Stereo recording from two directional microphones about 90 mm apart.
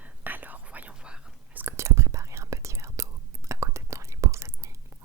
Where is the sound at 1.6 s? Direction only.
30° right (ahead or behind).